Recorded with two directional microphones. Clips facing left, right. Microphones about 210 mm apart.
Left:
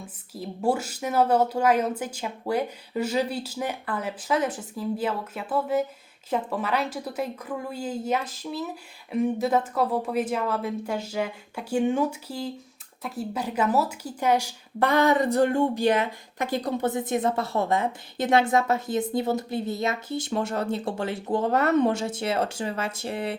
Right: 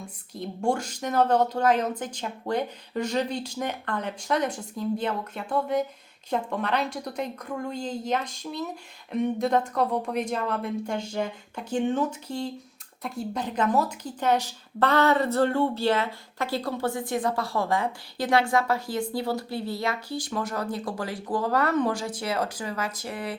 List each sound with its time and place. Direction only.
0.0 s speech: 5° left (ahead or behind); by 23.3 s 25° left (ahead or behind)